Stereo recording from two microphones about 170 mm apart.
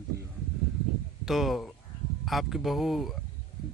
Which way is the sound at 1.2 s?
Centre (ahead or behind).